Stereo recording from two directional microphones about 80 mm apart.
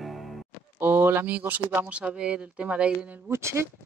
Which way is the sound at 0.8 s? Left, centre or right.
Right.